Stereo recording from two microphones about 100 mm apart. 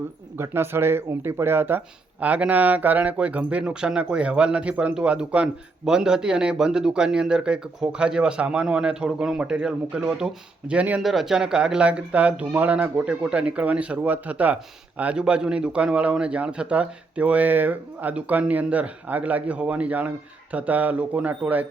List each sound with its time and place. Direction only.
0.3 s speech: 25° right (ahead or behind)